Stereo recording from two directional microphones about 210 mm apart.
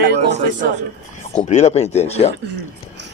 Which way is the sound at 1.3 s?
30° left (ahead or behind).